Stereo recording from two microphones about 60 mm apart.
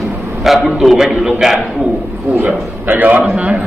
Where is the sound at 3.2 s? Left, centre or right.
Centre.